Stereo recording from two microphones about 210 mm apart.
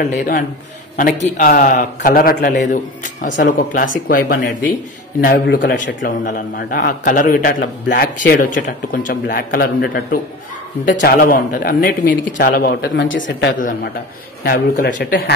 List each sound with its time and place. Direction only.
0.0 s a man's voice: 40° left (ahead or behind)
6.2 s a man's voice: 40° left (ahead or behind)
13.6 s a man's voice: 45° left (ahead or behind)